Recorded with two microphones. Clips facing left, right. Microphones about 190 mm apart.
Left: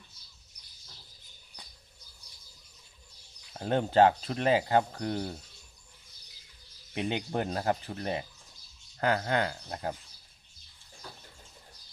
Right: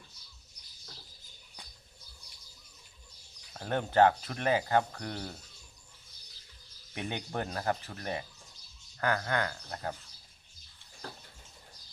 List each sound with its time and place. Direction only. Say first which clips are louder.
3.5 s speech: left 3 dB; 25° left (ahead or behind)
6.9 s speech: left 5 dB; 25° left (ahead or behind)